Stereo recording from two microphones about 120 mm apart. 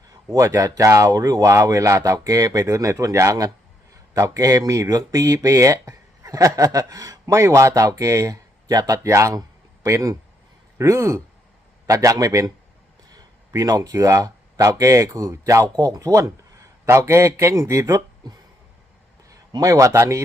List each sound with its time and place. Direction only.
0.3 s a man's voice: 25° right (ahead or behind)